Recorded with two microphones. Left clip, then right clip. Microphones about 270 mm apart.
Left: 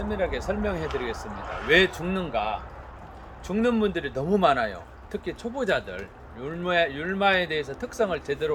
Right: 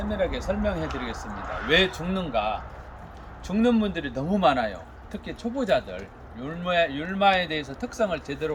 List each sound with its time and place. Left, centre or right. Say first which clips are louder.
0.1 s speech: right 1 dB; centre
1.4 s a man's voice: right 2 dB; left
1.7 s speech: left 2 dB; centre